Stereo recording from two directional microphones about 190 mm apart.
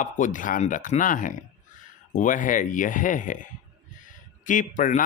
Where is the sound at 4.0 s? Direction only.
45° left (ahead or behind).